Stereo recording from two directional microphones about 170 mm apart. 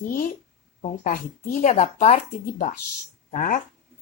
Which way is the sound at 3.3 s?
50° left (ahead or behind).